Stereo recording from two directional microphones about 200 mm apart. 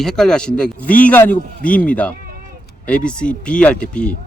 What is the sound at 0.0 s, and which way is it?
Speech, 5° left (ahead or behind).